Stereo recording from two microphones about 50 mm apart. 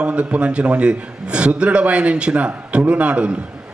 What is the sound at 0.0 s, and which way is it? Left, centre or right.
A man's voice, right.